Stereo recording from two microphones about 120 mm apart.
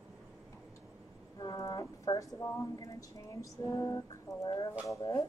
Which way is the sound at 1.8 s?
25° left (ahead or behind).